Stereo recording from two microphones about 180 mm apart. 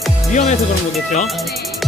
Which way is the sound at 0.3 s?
40° left (ahead or behind).